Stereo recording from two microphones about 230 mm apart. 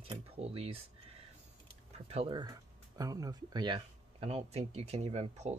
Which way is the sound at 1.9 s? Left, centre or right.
Right.